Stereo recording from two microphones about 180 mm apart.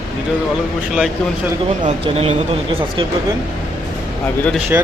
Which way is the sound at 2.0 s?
35° right (ahead or behind).